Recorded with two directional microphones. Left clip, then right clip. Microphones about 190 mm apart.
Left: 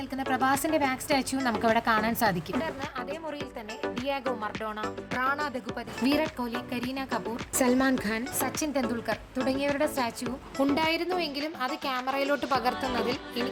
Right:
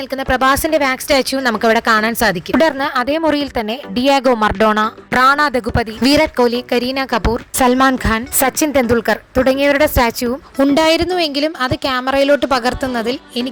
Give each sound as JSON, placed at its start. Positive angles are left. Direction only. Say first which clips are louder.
{"t": 0.3, "sound": "speech", "louder": "right 12 dB", "side_deg": -40}
{"t": 2.6, "sound": "a woman's voice", "louder": "right 19 dB", "side_deg": -55}